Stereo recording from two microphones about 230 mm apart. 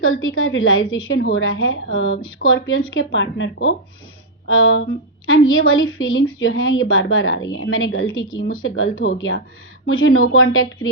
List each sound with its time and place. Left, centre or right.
0.0 s a woman's voice: left